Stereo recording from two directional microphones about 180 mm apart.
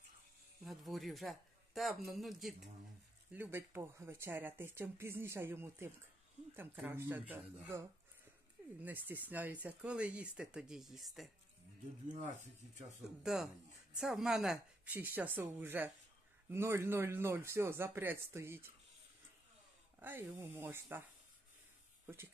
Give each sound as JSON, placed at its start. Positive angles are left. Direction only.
{"t": 0.7, "sound": "a man's voice", "side_deg": 0}
{"t": 3.3, "sound": "speech", "side_deg": -10}
{"t": 12.1, "sound": "speech", "side_deg": -40}
{"t": 13.2, "sound": "a man's voice", "side_deg": 0}
{"t": 20.0, "sound": "speech", "side_deg": -10}
{"t": 22.0, "sound": "speech", "side_deg": -15}